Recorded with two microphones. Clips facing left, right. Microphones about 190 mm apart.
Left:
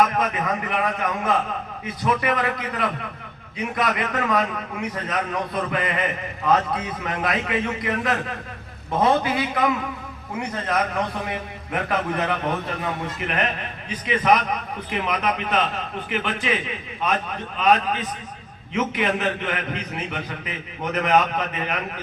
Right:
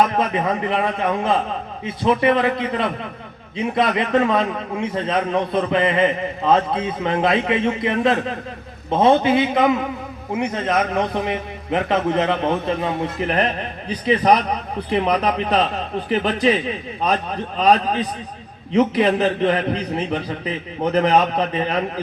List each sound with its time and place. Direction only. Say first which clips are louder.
0.0 s a man's voice: right 3 dB; 30° right (ahead or behind)
13.1 s a man's voice: right 5 dB; 35° right (ahead or behind)